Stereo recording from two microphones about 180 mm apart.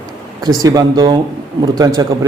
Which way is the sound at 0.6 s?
20° right (ahead or behind).